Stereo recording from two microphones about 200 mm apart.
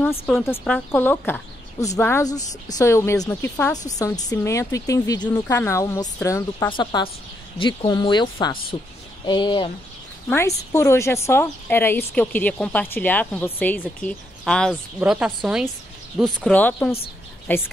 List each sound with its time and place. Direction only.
0.4 s a woman's voice: 10° left (ahead or behind)
10.3 s a woman's voice: 15° left (ahead or behind)
15.0 s a woman's voice: 5° right (ahead or behind); by 17.6 s 10° left (ahead or behind)